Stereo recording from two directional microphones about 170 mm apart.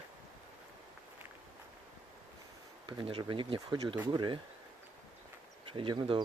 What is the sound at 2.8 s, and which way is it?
Speech, 30° right (ahead or behind).